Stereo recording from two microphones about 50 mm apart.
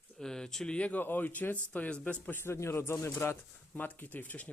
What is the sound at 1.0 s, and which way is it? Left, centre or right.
Speech, left.